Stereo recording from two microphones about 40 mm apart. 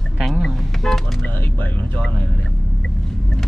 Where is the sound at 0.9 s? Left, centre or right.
Centre.